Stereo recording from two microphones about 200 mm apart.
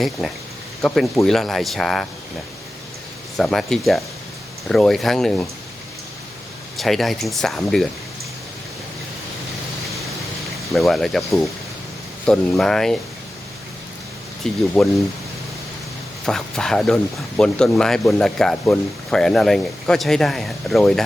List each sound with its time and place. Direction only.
0.2 s speech: 15° left (ahead or behind)
0.8 s speech: 5° left (ahead or behind)
3.3 s speech: centre (ahead or behind)
6.7 s speech: centre (ahead or behind)
10.7 s speech: centre (ahead or behind)
14.4 s speech: centre (ahead or behind)
16.2 s speech: centre (ahead or behind)